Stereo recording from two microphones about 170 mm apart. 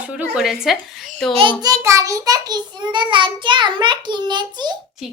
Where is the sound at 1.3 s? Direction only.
30° right (ahead or behind).